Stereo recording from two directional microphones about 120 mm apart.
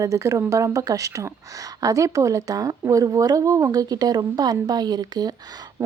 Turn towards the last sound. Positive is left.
turn(degrees=-35)  # may be behind; listen again after turning